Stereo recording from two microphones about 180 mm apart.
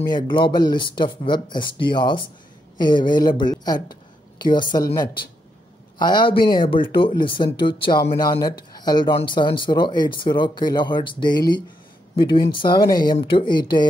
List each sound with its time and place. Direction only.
0.1 s a woman's voice: 25° left (ahead or behind)